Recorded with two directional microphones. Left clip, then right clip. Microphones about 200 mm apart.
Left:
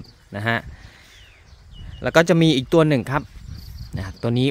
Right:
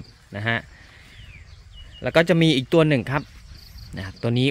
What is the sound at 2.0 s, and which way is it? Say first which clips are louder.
Speech: left 2 dB; 15° left (ahead or behind).